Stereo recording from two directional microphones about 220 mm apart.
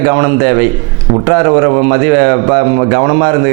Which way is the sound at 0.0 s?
20° right (ahead or behind).